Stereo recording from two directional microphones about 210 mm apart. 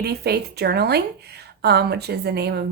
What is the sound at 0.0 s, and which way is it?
Speech, 50° right (ahead or behind).